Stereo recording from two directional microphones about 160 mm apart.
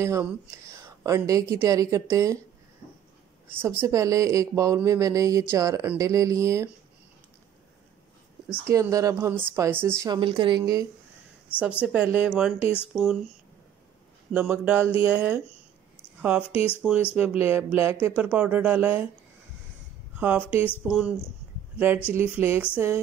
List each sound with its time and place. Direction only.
0.0 s a woman's voice: 15° right (ahead or behind)
3.4 s a woman's voice: 15° right (ahead or behind)
8.6 s speech: 20° right (ahead or behind)
10.0 s speech: 30° right (ahead or behind)
10.6 s a woman's voice: 20° right (ahead or behind)
11.8 s speech: 10° right (ahead or behind)
14.3 s speech: 10° right (ahead or behind)
20.2 s speech: 10° right (ahead or behind)